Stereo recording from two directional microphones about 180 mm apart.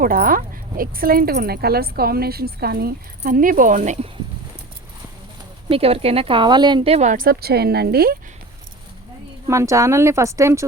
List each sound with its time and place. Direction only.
0.0 s speech: 50° right (ahead or behind)
5.6 s speech: 30° right (ahead or behind); by 8.1 s 60° right (ahead or behind)
9.5 s a woman's voice: 15° right (ahead or behind)